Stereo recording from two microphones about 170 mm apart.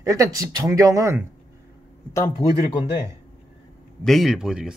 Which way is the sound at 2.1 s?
20° left (ahead or behind).